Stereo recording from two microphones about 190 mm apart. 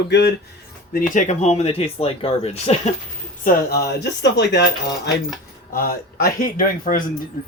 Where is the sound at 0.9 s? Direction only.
45° left (ahead or behind).